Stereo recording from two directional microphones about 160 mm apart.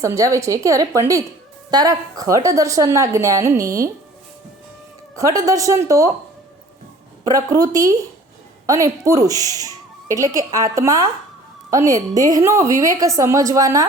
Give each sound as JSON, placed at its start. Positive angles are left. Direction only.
{"t": 0.0, "sound": "a woman's voice", "side_deg": -20}
{"t": 5.1, "sound": "a woman's voice", "side_deg": -20}
{"t": 7.3, "sound": "a woman's voice", "side_deg": -20}